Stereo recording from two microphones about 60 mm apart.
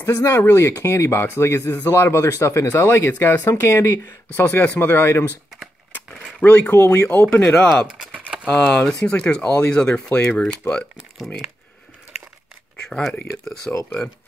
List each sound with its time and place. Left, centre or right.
0.0 s speech: left
4.4 s speech: left
6.4 s speech: left
6.8 s speech: left
7.3 s speech: left
8.5 s speech: left
12.7 s a sound: centre
13.7 s speech: left